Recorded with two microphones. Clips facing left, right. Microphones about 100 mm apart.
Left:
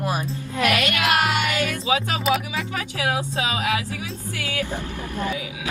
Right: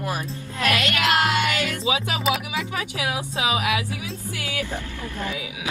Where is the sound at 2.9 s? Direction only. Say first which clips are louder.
Left 5 dB; 45° left (ahead or behind).